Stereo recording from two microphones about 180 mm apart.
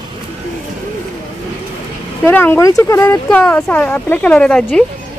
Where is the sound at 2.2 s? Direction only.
10° left (ahead or behind).